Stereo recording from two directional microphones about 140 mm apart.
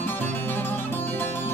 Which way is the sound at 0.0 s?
15° left (ahead or behind).